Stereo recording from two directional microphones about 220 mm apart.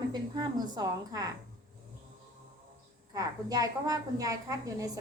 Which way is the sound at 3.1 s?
15° right (ahead or behind).